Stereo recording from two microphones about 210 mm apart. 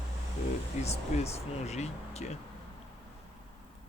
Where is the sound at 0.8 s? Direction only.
30° left (ahead or behind).